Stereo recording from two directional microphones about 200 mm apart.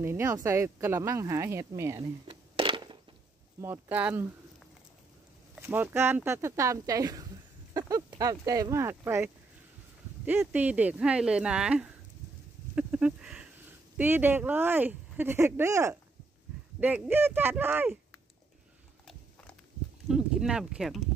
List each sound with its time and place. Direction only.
0.0 s speech: 10° right (ahead or behind)
2.0 s a sound: 25° right (ahead or behind)
3.6 s speech: 10° right (ahead or behind)
5.6 s speech: 10° right (ahead or behind)
12.7 s a sound: 5° right (ahead or behind)
13.9 s speech: 10° right (ahead or behind)
20.1 s speech: 5° right (ahead or behind)